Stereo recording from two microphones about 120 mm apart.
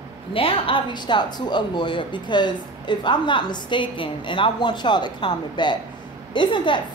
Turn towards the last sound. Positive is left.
turn(degrees=40)  # may be behind; listen again after turning